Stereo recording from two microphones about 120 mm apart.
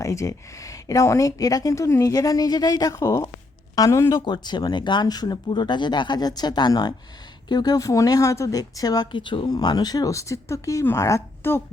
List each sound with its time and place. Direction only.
0.0 s speech: 25° left (ahead or behind); by 9.6 s 45° left (ahead or behind)
9.6 s speech: 35° left (ahead or behind)